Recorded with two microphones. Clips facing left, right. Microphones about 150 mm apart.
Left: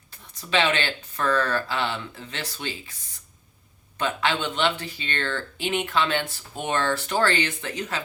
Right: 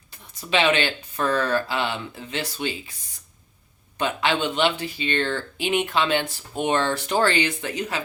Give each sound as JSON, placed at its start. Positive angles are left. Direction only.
{"t": 0.5, "sound": "speech", "side_deg": -15}
{"t": 3.9, "sound": "speech", "side_deg": -15}